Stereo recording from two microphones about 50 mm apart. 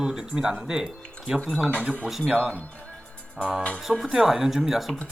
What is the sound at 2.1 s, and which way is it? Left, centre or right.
Speech, centre.